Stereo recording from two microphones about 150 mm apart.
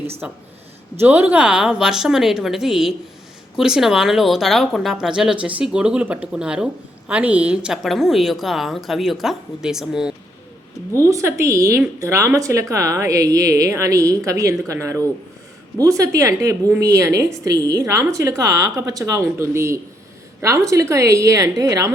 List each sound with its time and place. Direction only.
0.2 s speech: 10° right (ahead or behind)
10.9 s a woman's voice: 20° right (ahead or behind)